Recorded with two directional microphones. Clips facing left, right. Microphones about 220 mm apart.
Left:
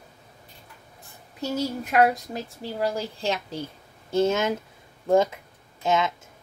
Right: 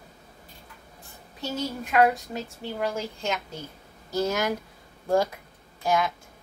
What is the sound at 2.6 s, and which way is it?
A woman's voice, 35° left (ahead or behind).